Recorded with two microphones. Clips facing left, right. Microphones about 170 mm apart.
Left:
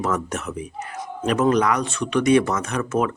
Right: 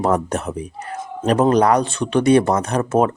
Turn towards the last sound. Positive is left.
turn(degrees=-35)  # may be behind; listen again after turning